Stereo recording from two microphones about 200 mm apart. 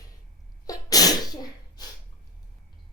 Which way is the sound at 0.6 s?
20° left (ahead or behind).